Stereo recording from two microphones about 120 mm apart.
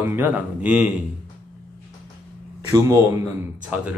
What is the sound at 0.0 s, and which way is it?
Speech, 15° right (ahead or behind).